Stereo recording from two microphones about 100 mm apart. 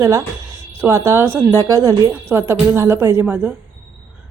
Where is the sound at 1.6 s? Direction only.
35° right (ahead or behind).